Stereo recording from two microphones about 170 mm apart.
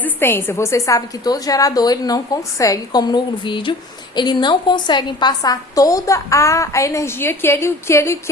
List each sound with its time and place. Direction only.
0.0 s a woman's voice: 15° left (ahead or behind)